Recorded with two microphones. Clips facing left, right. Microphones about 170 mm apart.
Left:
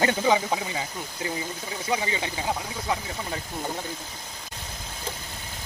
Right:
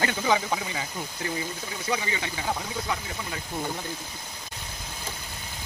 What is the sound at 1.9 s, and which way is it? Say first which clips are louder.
Speech: left 2 dB; 25° left (ahead or behind).